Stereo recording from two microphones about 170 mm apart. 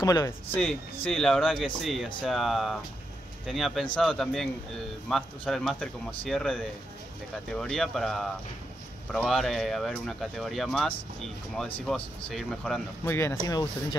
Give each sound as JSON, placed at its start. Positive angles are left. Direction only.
{"t": 0.0, "sound": "speech", "side_deg": 20}
{"t": 1.0, "sound": "speech", "side_deg": 5}
{"t": 13.0, "sound": "speech", "side_deg": 15}